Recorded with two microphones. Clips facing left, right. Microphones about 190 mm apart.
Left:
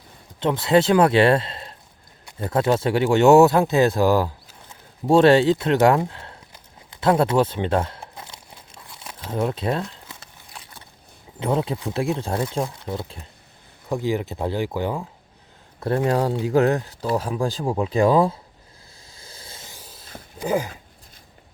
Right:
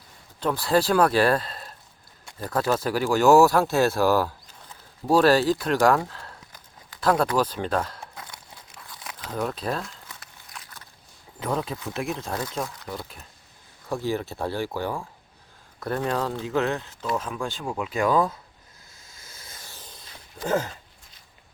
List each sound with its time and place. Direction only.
0.3 s speech: 25° left (ahead or behind)
8.9 s crumpling: 25° left (ahead or behind)
11.3 s speech: 25° left (ahead or behind)
16.0 s speech: 30° left (ahead or behind)
19.0 s a sound: 35° left (ahead or behind)
19.6 s a sound: 10° left (ahead or behind)
20.4 s speech: 10° left (ahead or behind)